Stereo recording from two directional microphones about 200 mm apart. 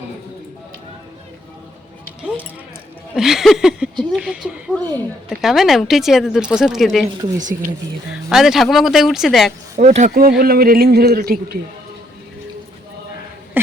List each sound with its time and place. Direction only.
2.2 s speech: 10° right (ahead or behind)
4.7 s speech: 10° left (ahead or behind)
5.3 s speech: centre (ahead or behind)
7.3 s speech: 40° right (ahead or behind)
8.1 s speech: centre (ahead or behind)
9.7 s speech: 35° right (ahead or behind)
10.2 s speech: 50° right (ahead or behind)